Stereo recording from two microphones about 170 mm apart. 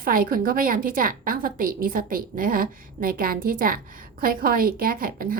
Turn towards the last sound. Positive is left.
turn(degrees=-55)  # may be behind; listen again after turning